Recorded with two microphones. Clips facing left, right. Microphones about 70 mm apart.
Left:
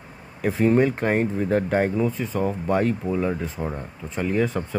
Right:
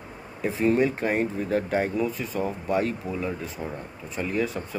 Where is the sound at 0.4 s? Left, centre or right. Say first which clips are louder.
Left 4 dB; left.